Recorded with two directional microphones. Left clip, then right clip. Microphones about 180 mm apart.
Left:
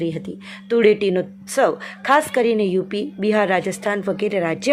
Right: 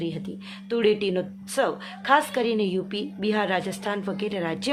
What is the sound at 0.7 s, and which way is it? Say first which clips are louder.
A woman's voice: left 7 dB; 30° left (ahead or behind).